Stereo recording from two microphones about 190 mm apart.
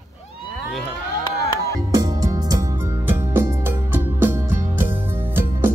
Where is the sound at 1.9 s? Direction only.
20° right (ahead or behind).